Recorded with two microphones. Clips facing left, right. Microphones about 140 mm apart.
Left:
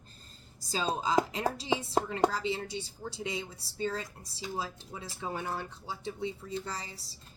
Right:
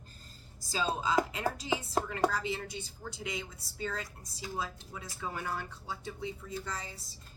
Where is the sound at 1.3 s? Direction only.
25° left (ahead or behind).